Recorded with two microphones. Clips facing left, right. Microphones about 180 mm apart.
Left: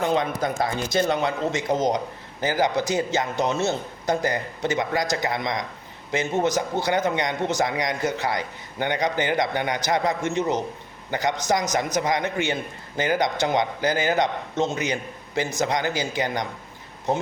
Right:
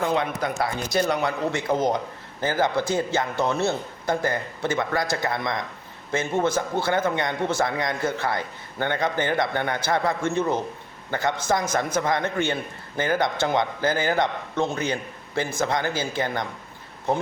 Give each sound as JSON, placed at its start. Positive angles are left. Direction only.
{"t": 0.0, "sound": "a man's voice", "side_deg": 20}